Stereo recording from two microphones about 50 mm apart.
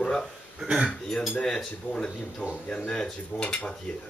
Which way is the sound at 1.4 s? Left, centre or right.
Centre.